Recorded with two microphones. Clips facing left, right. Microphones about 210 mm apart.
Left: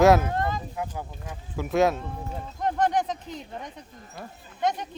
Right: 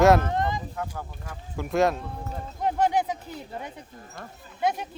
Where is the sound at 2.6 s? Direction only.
10° right (ahead or behind).